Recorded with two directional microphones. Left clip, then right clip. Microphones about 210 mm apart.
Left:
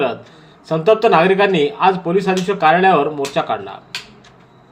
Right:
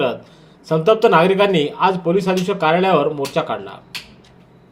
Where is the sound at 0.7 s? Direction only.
40° right (ahead or behind).